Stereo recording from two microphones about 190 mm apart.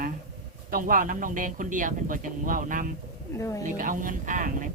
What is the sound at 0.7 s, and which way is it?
Speech, 45° right (ahead or behind).